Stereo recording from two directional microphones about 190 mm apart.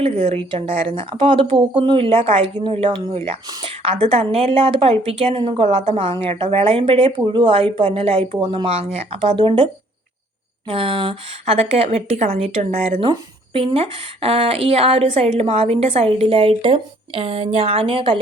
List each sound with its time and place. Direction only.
0.0 s a woman's voice: 30° right (ahead or behind)
10.7 s a woman's voice: 30° right (ahead or behind)